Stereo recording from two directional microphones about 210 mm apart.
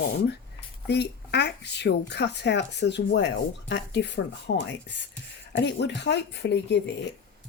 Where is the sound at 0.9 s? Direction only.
55° left (ahead or behind).